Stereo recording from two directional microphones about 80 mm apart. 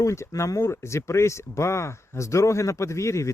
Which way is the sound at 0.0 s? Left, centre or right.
Left.